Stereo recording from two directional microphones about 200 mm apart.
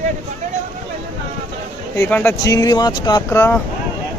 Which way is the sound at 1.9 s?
10° left (ahead or behind).